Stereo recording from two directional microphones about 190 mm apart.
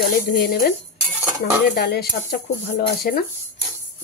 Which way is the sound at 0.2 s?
50° left (ahead or behind).